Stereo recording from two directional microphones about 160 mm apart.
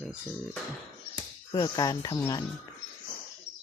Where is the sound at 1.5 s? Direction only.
25° left (ahead or behind).